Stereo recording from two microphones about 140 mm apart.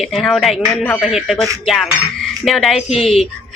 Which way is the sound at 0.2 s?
Centre (ahead or behind).